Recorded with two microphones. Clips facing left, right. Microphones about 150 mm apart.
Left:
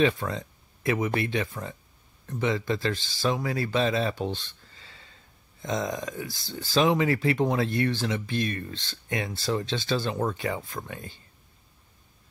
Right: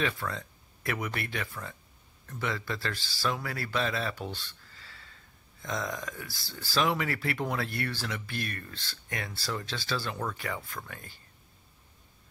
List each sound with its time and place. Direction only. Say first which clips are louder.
0.0 s speech: left 8 dB; 20° left (ahead or behind)